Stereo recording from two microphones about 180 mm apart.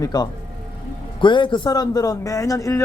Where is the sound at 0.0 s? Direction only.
20° left (ahead or behind).